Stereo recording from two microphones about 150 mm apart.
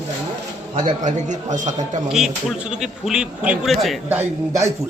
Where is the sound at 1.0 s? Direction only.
55° right (ahead or behind).